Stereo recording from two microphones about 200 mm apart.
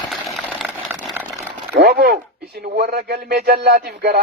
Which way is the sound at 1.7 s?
50° right (ahead or behind).